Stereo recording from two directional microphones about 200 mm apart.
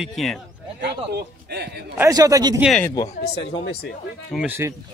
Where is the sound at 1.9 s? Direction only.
15° right (ahead or behind).